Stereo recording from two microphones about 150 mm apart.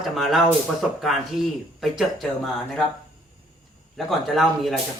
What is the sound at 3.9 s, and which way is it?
Speech, centre (ahead or behind).